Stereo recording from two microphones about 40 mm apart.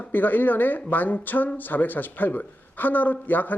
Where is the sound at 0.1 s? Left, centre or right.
Left.